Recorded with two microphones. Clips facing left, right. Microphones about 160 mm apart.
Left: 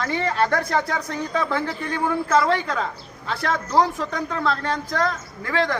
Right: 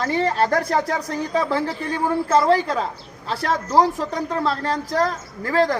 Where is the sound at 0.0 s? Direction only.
35° right (ahead or behind).